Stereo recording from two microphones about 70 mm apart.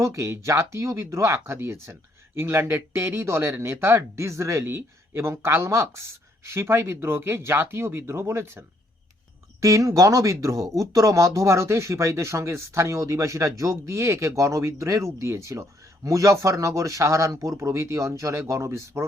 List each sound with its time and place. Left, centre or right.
0.0 s speech: right
9.6 s speech: right